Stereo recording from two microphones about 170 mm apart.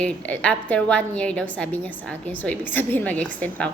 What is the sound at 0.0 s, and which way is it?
A woman's voice, 5° left (ahead or behind).